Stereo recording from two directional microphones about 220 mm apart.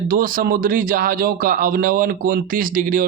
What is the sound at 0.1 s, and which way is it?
Speech, 40° right (ahead or behind).